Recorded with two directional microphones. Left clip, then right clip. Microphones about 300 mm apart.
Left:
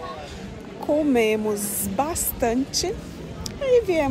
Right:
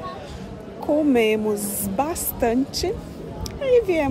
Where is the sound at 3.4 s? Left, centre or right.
Centre.